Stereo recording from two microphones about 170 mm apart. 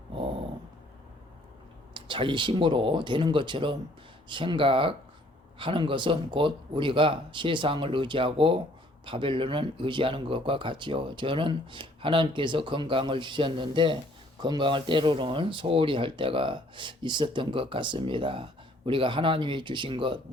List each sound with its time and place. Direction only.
1.9 s speech: 30° right (ahead or behind)